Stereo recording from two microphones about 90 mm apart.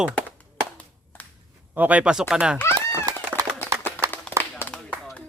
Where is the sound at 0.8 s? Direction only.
15° left (ahead or behind).